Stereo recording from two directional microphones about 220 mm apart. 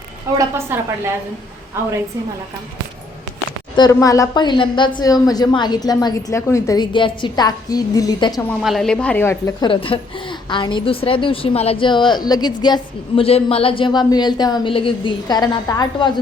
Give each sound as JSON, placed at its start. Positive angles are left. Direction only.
{"t": 0.3, "sound": "a woman's voice", "side_deg": -10}
{"t": 3.8, "sound": "a woman's voice", "side_deg": 15}
{"t": 8.6, "sound": "a woman's voice", "side_deg": 0}
{"t": 9.6, "sound": "a woman's voice", "side_deg": 25}